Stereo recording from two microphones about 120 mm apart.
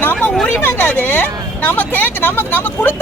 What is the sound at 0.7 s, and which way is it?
Speech, 15° left (ahead or behind).